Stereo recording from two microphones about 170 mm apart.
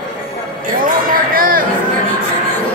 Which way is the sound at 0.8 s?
55° right (ahead or behind).